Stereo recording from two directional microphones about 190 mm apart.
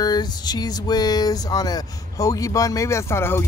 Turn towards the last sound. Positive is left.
turn(degrees=15)  # may be behind; listen again after turning